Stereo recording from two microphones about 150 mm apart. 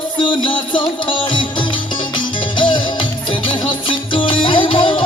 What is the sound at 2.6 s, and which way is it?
Music, 30° left (ahead or behind).